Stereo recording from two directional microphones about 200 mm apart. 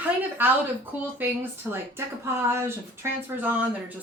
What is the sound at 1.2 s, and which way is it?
Speech, 10° right (ahead or behind).